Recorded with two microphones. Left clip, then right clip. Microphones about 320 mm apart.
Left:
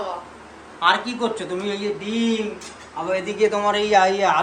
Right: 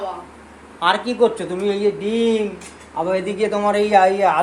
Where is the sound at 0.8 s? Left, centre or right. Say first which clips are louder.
Right 3 dB; centre.